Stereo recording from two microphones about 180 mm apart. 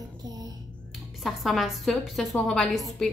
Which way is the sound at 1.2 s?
Centre (ahead or behind).